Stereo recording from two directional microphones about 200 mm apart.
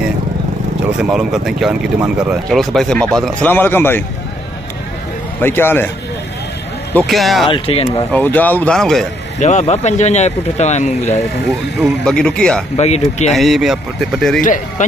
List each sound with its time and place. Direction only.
0.9 s speech: 5° right (ahead or behind); by 4.0 s 10° left (ahead or behind)
5.4 s speech: 10° left (ahead or behind)
6.9 s speech: 5° left (ahead or behind)
7.4 s speech: 25° left (ahead or behind)
8.1 s speech: 10° left (ahead or behind)
9.4 s speech: 35° left (ahead or behind)
11.8 s speech: 5° left (ahead or behind)
12.7 s speech: 35° left (ahead or behind)
13.3 s speech: centre (ahead or behind)
14.4 s speech: 40° left (ahead or behind)